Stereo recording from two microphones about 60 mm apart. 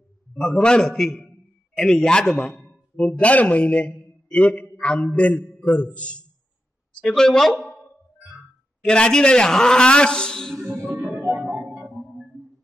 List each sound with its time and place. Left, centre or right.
0.4 s a man's voice: centre
7.0 s a man's voice: centre
7.6 s a sound: left
8.8 s a man's voice: centre
11.7 s organ: right